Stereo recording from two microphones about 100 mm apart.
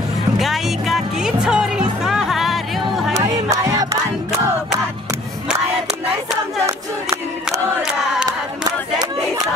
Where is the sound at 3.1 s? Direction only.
30° right (ahead or behind).